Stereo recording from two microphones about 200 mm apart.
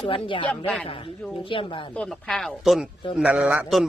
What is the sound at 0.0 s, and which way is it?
Speech, 25° left (ahead or behind).